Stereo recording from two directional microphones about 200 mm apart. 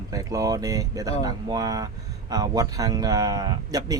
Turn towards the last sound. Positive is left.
turn(degrees=-20)  # may be behind; listen again after turning